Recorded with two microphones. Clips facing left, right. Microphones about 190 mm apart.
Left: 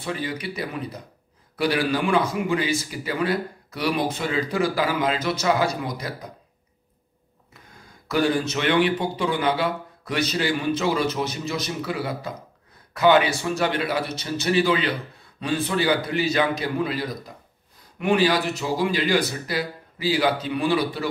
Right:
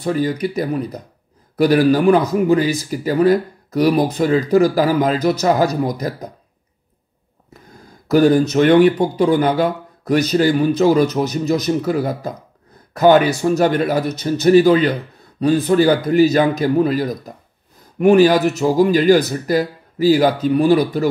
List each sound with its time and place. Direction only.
0.0 s a man's voice: 40° right (ahead or behind)
8.1 s a man's voice: 40° right (ahead or behind)